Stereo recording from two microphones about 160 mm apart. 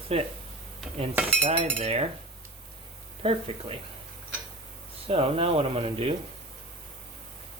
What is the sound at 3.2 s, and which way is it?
Speech, 35° right (ahead or behind).